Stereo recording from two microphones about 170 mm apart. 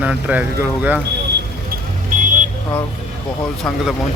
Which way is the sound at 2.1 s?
50° right (ahead or behind).